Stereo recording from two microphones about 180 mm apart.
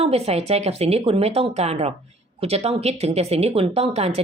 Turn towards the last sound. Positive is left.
turn(degrees=-35)  # may be behind; listen again after turning